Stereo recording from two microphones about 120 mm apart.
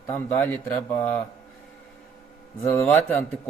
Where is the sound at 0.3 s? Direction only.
15° left (ahead or behind).